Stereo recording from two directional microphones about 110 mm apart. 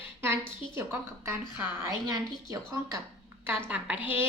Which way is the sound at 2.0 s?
35° right (ahead or behind).